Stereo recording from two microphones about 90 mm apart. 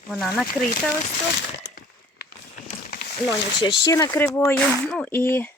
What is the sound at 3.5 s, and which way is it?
Speech, 60° left (ahead or behind).